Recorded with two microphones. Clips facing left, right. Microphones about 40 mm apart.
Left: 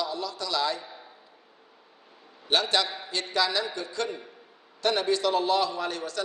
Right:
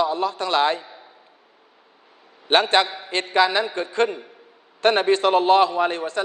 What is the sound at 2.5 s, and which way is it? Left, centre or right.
A man's voice, right.